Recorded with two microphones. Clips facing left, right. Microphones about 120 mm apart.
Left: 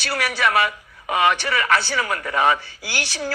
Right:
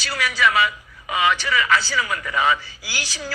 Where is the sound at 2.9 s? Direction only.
60° left (ahead or behind).